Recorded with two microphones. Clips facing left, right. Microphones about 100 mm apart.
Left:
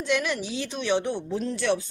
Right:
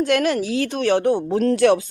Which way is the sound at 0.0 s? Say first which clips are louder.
Right 8 dB; 50° right (ahead or behind).